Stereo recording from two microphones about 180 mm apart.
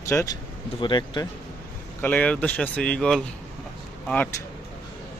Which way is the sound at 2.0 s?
10° left (ahead or behind).